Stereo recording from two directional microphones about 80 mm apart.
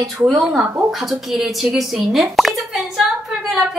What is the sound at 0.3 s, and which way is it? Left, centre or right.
A woman's voice, centre.